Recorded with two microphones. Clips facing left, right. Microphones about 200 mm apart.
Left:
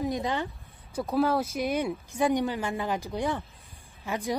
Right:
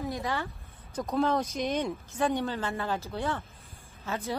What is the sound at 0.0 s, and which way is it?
Speech, 20° left (ahead or behind).